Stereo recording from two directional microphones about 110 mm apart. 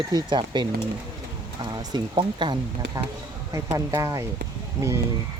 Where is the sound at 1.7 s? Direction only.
45° right (ahead or behind).